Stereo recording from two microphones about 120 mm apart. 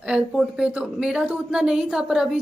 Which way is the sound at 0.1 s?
5° right (ahead or behind).